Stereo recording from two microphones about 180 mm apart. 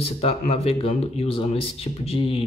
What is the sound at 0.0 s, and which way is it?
Speech, 35° left (ahead or behind).